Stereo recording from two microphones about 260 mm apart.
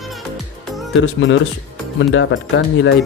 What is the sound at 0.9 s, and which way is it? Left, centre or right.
Speech, left.